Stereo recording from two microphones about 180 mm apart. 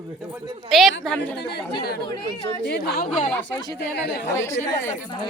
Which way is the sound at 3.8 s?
65° left (ahead or behind).